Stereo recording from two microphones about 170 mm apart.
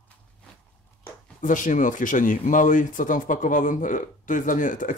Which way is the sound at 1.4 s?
50° left (ahead or behind).